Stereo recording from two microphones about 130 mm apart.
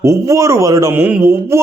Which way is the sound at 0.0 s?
25° right (ahead or behind).